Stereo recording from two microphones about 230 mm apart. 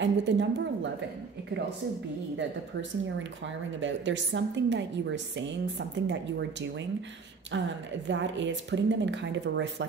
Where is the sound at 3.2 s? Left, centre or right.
Right.